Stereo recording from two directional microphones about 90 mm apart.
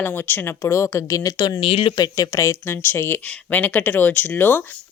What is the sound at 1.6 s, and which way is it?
Speech, 85° left.